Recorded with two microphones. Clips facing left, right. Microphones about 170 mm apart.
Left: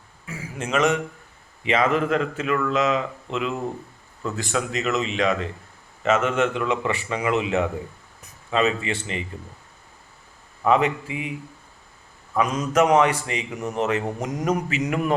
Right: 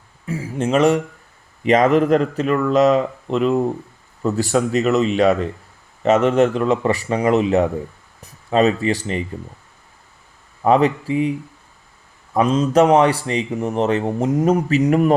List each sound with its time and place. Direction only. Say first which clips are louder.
0.3 s a man's voice: right 8 dB; 30° right (ahead or behind)
10.6 s a man's voice: right 5 dB; 35° right (ahead or behind)